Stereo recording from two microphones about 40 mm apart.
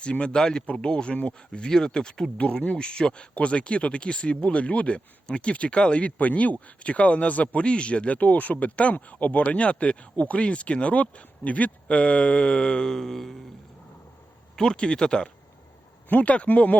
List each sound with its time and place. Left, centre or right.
0.0 s speech: left
7.6 s speech: left; by 13.3 s centre
14.5 s speech: centre
16.0 s speech: left